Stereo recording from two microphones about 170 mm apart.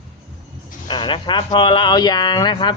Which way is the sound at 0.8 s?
30° left (ahead or behind).